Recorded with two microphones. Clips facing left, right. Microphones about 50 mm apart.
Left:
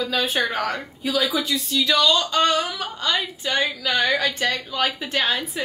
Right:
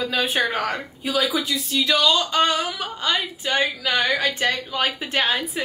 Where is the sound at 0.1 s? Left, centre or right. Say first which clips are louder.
Right 1 dB; centre.